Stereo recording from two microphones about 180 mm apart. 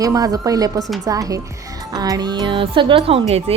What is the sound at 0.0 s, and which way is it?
Speech, 20° right (ahead or behind).